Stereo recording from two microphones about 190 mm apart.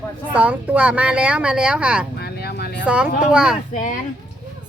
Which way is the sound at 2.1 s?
55° left (ahead or behind).